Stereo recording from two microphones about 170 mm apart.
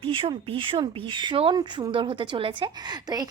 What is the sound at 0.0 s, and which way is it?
A woman's voice, 30° right (ahead or behind).